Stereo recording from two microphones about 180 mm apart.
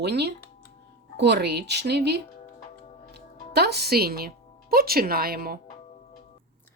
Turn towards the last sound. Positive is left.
turn(degrees=-55)  # may be behind; listen again after turning